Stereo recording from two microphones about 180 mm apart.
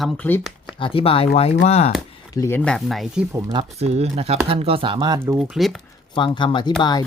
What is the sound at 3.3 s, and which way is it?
Speech, 25° right (ahead or behind).